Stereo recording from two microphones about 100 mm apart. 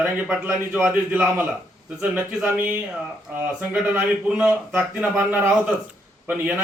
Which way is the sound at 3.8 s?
15° right (ahead or behind).